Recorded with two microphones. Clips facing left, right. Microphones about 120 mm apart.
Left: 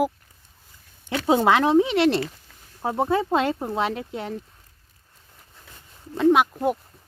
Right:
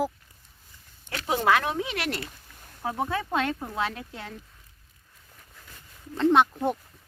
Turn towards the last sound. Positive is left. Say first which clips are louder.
# left 3 dB
turn(degrees=10)  # may be behind; listen again after turning